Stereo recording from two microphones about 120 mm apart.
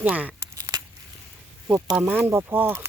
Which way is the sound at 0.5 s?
30° right (ahead or behind).